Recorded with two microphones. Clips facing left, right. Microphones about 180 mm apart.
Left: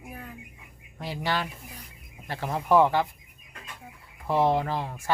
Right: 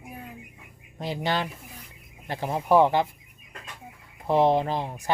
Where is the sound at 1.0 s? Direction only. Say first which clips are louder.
Right 2 dB; 20° right (ahead or behind).